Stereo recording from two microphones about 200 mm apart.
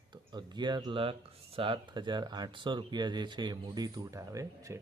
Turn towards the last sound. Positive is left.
turn(degrees=-15)  # may be behind; listen again after turning